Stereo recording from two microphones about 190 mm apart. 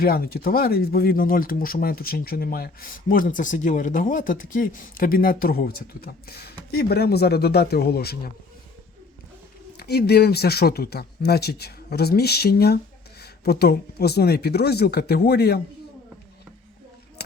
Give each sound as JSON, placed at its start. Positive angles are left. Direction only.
{"t": 0.0, "sound": "speech", "side_deg": 55}
{"t": 9.7, "sound": "speech", "side_deg": 55}
{"t": 17.2, "sound": "a sound", "side_deg": 60}